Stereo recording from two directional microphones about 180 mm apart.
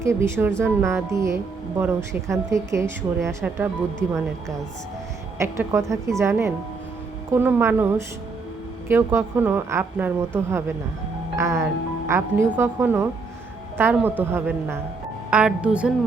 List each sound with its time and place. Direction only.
0.0 s speech: 15° right (ahead or behind)
5.4 s speech: 15° right (ahead or behind)
11.3 s speech: 15° right (ahead or behind)